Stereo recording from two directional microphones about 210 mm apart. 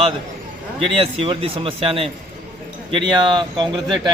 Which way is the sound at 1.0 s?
25° right (ahead or behind).